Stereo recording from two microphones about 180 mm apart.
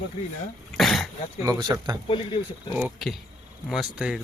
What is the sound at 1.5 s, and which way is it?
Speech, 20° right (ahead or behind).